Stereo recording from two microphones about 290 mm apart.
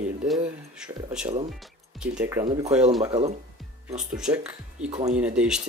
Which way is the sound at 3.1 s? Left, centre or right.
Right.